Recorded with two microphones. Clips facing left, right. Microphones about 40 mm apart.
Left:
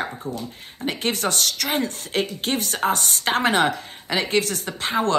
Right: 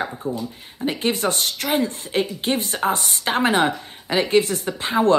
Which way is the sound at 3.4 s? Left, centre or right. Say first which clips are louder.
Right 1 dB; left.